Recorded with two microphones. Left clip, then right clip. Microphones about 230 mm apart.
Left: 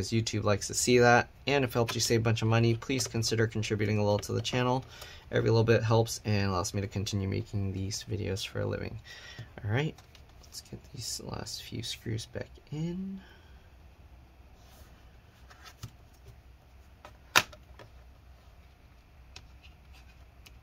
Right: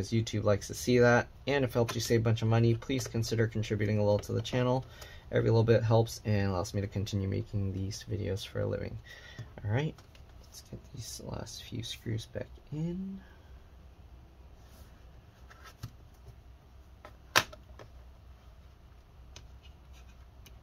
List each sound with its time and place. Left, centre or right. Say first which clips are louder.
0.0 s speech: left 1 dB; left